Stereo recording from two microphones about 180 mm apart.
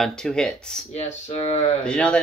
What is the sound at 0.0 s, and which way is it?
Speech, 5° left (ahead or behind).